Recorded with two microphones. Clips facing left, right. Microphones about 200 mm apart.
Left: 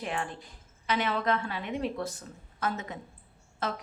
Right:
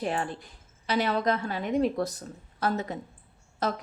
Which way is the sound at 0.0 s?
35° right (ahead or behind).